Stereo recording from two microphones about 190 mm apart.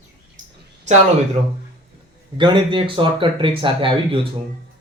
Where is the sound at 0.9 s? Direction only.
40° right (ahead or behind).